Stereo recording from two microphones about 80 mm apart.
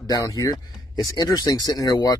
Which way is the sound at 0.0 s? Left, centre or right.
Left.